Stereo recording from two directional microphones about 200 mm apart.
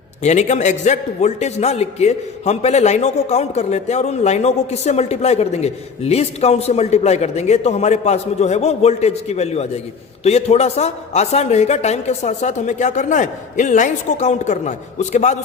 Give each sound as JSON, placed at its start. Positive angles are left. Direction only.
{"t": 0.2, "sound": "a man's voice", "side_deg": 35}